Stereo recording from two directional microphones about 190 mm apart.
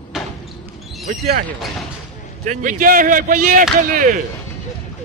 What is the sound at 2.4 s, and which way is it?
A man's voice, 40° right (ahead or behind).